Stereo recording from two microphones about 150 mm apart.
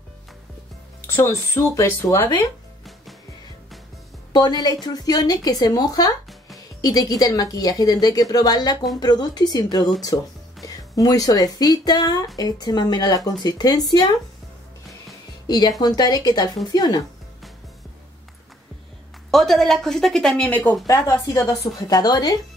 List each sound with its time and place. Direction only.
1.1 s speech: 20° left (ahead or behind)
4.3 s a woman's voice: 30° left (ahead or behind)
15.4 s a woman's voice: 25° left (ahead or behind)
19.3 s a woman's voice: centre (ahead or behind)
20.8 s a woman's voice: 25° left (ahead or behind)